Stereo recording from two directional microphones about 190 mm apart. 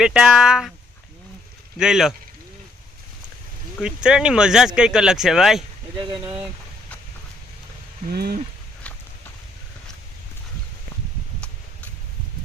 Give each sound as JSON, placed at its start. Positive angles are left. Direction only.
{"t": 0.0, "sound": "speech", "side_deg": -5}
{"t": 1.8, "sound": "speech", "side_deg": 0}
{"t": 3.8, "sound": "speech", "side_deg": -5}
{"t": 6.0, "sound": "speech", "side_deg": -25}
{"t": 8.0, "sound": "speech", "side_deg": -55}